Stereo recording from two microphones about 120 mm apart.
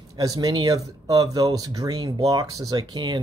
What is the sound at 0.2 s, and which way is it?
Speech, 30° right (ahead or behind).